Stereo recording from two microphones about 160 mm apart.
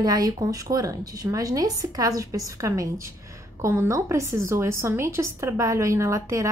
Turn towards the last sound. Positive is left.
turn(degrees=-20)  # may be behind; listen again after turning